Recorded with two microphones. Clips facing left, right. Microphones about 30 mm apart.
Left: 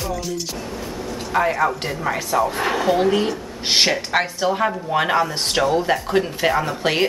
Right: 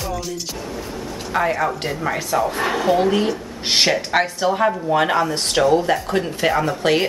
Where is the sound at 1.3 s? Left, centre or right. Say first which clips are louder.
Left 1 dB; centre.